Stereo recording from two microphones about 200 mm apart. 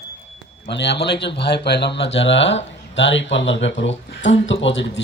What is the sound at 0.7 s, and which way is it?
Speech, 60° left (ahead or behind).